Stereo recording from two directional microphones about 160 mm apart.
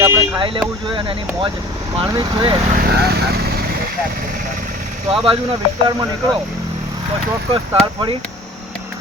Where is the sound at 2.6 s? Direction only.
65° right (ahead or behind).